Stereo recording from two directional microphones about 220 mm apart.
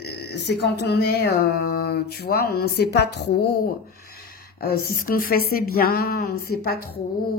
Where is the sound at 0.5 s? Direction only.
50° left (ahead or behind).